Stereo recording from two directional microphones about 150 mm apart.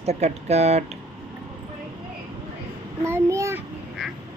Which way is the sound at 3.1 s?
20° right (ahead or behind).